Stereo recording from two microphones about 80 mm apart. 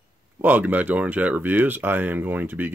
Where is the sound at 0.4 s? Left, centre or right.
Right.